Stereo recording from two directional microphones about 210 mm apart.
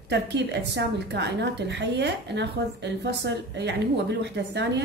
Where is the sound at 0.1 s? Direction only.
55° right (ahead or behind).